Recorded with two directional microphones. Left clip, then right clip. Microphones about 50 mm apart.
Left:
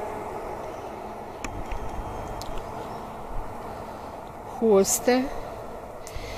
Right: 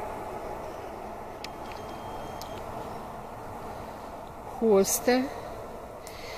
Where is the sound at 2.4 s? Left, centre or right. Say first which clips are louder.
Left 2 dB; centre.